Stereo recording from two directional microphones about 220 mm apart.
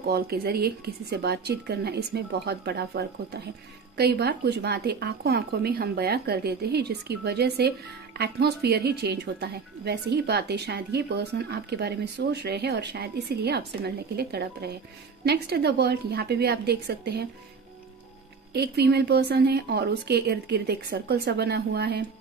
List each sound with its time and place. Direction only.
0.0 s speech: 45° right (ahead or behind)
18.5 s speech: 50° right (ahead or behind)